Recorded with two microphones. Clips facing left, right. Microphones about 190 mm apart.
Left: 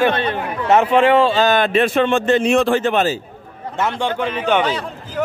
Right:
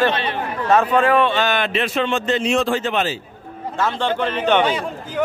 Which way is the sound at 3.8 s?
15° left (ahead or behind).